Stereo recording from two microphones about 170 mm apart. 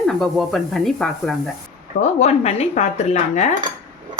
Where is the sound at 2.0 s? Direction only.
40° left (ahead or behind).